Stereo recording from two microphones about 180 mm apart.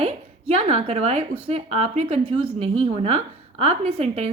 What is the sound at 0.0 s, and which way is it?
A woman's voice, 35° right (ahead or behind).